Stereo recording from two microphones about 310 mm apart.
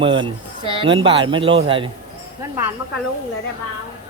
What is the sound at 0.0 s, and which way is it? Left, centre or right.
Speech, centre.